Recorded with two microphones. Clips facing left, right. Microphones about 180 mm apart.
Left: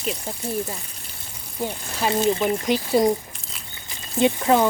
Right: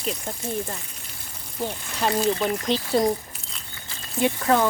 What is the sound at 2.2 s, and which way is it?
Speech, 20° left (ahead or behind).